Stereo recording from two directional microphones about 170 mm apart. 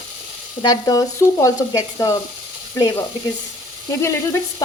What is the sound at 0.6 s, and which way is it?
Frying, 25° left (ahead or behind).